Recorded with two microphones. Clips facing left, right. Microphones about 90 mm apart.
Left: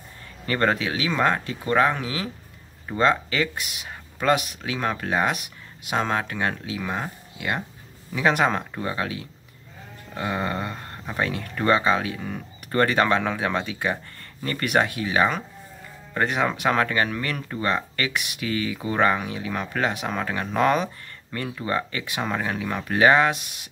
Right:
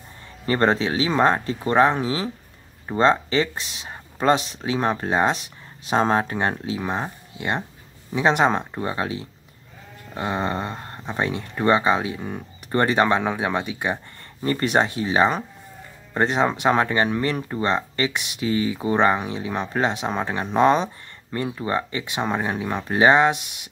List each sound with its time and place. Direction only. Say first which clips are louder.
0.5 s speech: right 3 dB; 30° right (ahead or behind)